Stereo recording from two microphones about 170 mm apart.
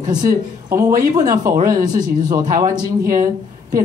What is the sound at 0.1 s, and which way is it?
Speech, 20° right (ahead or behind).